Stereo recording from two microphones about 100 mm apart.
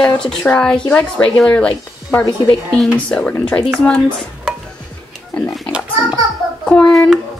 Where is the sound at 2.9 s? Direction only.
15° left (ahead or behind).